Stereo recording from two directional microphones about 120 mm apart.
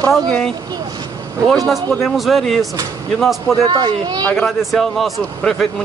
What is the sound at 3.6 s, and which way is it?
Speech, 35° right (ahead or behind).